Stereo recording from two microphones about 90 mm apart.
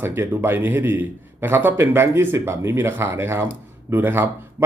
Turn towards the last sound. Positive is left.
turn(degrees=-25)  # may be behind; listen again after turning